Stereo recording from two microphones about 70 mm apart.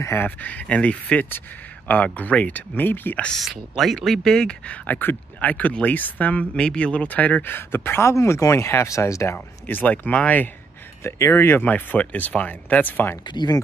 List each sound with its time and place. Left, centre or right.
0.0 s speech: left
0.4 s speech: left
3.4 s speech: centre; by 9.4 s left
9.7 s speech: left
11.1 s speech: left
11.6 s speech: left
13.3 s speech: left